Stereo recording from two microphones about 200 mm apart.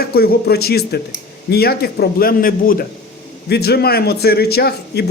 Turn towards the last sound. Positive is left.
turn(degrees=50)  # may be behind; listen again after turning